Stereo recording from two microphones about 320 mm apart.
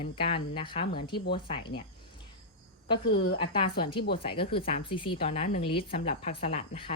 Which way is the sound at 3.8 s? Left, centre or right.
Centre.